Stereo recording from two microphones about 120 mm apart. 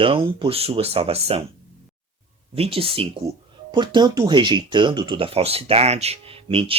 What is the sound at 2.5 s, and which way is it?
Speech, 55° right (ahead or behind).